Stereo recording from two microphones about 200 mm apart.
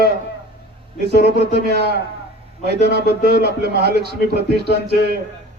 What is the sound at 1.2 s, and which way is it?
A man's voice, 55° right (ahead or behind).